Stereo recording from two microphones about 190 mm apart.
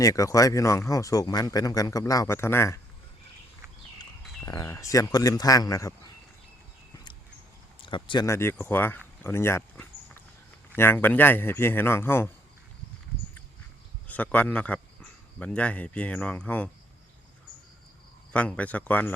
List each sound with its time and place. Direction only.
0.0 s speech: 15° left (ahead or behind)
4.4 s speech: 15° left (ahead or behind)
6.9 s a sound: 25° left (ahead or behind)
7.8 s speech: 25° left (ahead or behind)
14.1 s a man's voice: 5° left (ahead or behind)
18.3 s speech: 5° left (ahead or behind)